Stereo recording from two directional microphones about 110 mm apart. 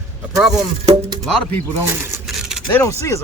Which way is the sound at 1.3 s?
5° left (ahead or behind).